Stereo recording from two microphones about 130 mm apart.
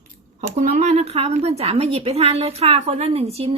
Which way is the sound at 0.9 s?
50° right (ahead or behind).